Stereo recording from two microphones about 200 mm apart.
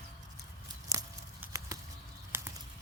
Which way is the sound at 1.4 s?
15° right (ahead or behind).